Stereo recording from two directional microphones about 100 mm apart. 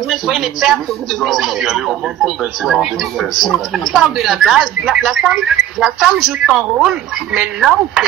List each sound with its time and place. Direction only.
0.1 s a man's voice: centre (ahead or behind)